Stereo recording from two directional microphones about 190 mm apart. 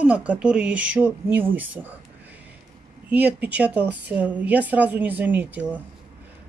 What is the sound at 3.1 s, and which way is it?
Speech, 10° right (ahead or behind).